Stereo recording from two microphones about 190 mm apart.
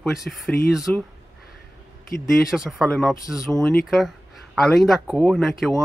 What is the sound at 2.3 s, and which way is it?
Speech, centre (ahead or behind).